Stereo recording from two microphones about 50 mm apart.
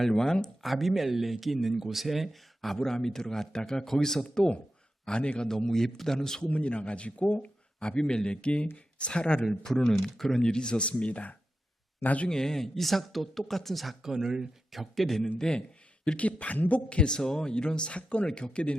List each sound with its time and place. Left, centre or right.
0.0 s speech: centre
6.5 s speech: left
7.8 s speech: centre
12.3 s speech: centre
14.7 s speech: centre
16.0 s speech: left